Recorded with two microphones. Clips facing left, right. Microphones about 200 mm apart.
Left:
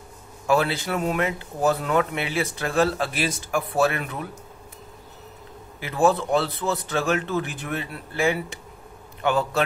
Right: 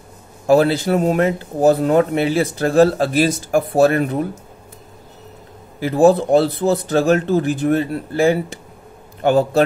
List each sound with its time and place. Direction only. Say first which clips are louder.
0.5 s speech: right 9 dB; 40° right (ahead or behind)
5.8 s speech: right 8 dB; 40° right (ahead or behind)